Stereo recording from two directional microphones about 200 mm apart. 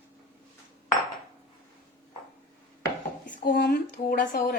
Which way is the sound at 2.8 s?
45° left (ahead or behind).